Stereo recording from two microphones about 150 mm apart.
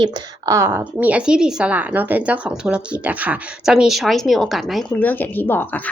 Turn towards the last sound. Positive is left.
turn(degrees=15)  # may be behind; listen again after turning